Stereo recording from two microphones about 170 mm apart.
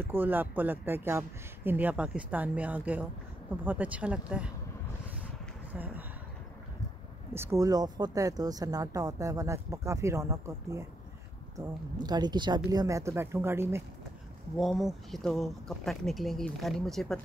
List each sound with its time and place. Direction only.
0.0 s speech: 10° right (ahead or behind)
5.7 s speech: 10° right (ahead or behind)
7.3 s speech: 15° right (ahead or behind)
14.6 s speech: centre (ahead or behind)